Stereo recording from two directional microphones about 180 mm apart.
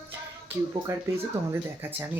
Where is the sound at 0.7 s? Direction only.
15° right (ahead or behind).